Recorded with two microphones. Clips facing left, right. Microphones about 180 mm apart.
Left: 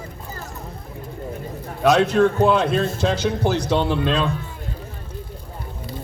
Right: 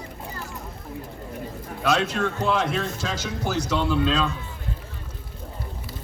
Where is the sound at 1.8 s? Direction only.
60° left (ahead or behind).